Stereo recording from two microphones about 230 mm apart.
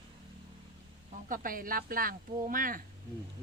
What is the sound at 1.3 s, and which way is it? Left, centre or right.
Speech, right.